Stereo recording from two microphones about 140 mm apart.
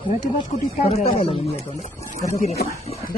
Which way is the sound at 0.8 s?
50° left (ahead or behind).